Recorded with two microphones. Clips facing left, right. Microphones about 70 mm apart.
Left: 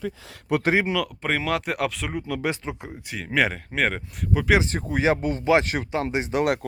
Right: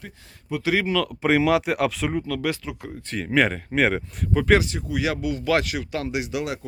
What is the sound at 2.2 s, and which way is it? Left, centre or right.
Speech, centre.